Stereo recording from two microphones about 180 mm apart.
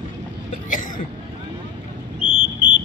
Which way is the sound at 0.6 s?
45° left (ahead or behind).